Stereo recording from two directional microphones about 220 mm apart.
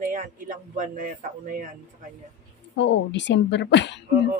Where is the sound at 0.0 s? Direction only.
35° right (ahead or behind).